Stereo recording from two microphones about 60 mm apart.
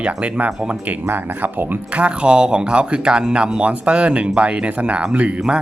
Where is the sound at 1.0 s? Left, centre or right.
Right.